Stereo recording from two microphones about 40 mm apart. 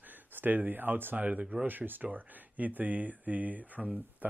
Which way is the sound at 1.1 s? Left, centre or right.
Right.